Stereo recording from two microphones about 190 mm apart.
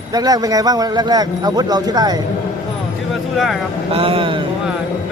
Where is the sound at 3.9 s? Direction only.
30° right (ahead or behind).